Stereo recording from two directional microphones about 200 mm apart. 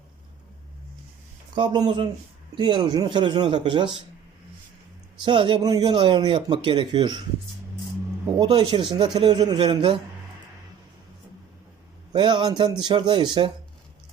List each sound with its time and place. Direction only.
1.5 s speech: 20° right (ahead or behind)
5.2 s speech: 25° right (ahead or behind)
8.4 s speech: 20° right (ahead or behind)
12.1 s speech: 20° right (ahead or behind)